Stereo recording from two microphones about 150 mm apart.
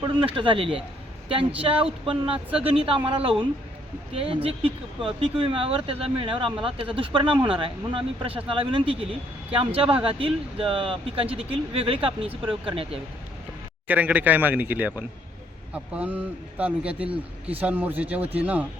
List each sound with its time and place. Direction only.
0.0 s speech: 35° right (ahead or behind)
13.8 s speech: 10° right (ahead or behind)